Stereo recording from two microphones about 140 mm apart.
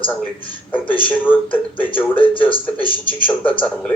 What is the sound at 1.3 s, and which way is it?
Speech, 10° left (ahead or behind).